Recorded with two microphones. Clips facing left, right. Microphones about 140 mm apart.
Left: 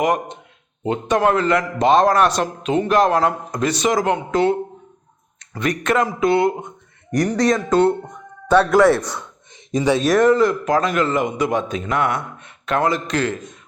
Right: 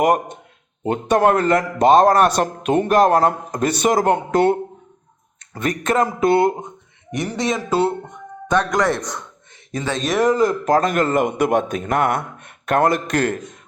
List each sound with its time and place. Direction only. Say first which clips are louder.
0.0 s a man's voice: right 2 dB; 50° right (ahead or behind)
5.5 s a man's voice: even; 45° right (ahead or behind)
7.5 s speech: left 1 dB; 5° right (ahead or behind)
8.5 s a man's voice: left 5 dB; 10° left (ahead or behind)
10.0 s speech: left 1 dB; centre (ahead or behind)
10.3 s a man's voice: even; 40° right (ahead or behind)